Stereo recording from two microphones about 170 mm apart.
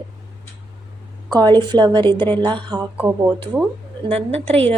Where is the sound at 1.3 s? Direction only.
25° right (ahead or behind).